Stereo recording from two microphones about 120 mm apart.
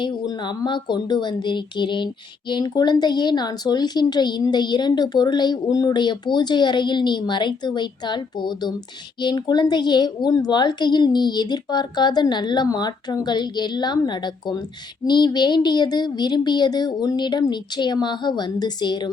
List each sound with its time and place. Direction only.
0.0 s speech: 40° left (ahead or behind)